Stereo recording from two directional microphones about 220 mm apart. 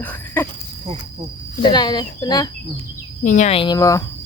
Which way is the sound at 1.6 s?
20° left (ahead or behind).